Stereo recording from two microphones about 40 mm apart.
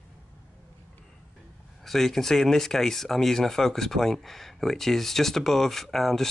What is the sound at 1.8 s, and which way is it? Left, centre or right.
Speech, centre.